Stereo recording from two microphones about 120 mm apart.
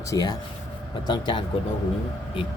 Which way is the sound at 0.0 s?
30° left (ahead or behind).